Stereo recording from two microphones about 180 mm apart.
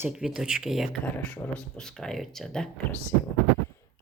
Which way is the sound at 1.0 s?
10° left (ahead or behind).